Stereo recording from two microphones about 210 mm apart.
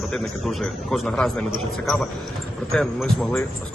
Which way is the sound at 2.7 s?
Centre (ahead or behind).